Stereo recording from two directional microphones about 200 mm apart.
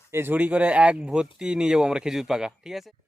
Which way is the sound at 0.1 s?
10° right (ahead or behind).